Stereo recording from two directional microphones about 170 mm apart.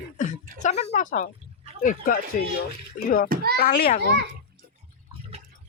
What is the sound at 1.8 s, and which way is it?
Speech, 50° left (ahead or behind).